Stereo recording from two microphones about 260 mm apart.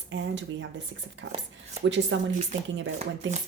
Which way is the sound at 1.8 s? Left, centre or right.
Right.